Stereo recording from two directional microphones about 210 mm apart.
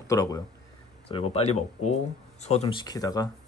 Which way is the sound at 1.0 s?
30° left (ahead or behind).